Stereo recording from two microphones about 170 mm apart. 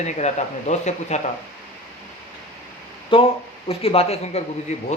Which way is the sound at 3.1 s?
30° left (ahead or behind).